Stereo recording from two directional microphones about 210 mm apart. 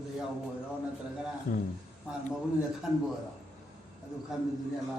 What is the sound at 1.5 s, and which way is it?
Speech, 35° left (ahead or behind).